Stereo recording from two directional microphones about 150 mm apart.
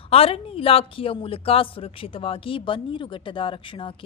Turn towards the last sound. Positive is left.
turn(degrees=35)  # may be behind; listen again after turning